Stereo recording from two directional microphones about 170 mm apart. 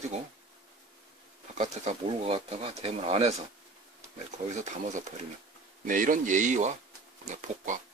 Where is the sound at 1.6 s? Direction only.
40° right (ahead or behind).